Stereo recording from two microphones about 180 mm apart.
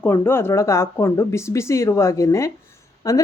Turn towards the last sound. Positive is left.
turn(degrees=20)  # may be behind; listen again after turning